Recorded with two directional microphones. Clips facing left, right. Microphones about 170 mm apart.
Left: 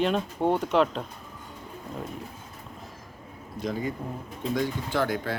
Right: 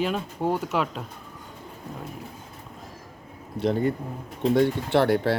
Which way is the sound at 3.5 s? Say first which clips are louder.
Right 6 dB; 65° right (ahead or behind).